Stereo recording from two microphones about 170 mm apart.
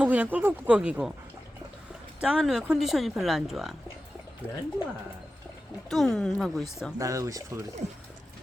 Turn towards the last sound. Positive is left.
turn(degrees=-20)  # may be behind; listen again after turning